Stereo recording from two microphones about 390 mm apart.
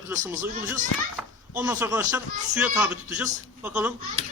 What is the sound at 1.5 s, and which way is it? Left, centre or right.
Speech, centre.